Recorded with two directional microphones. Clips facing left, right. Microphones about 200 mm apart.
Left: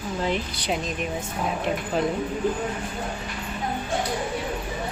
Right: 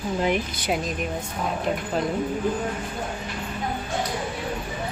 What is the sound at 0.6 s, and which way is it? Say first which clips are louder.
Speech: even; 5° right (ahead or behind).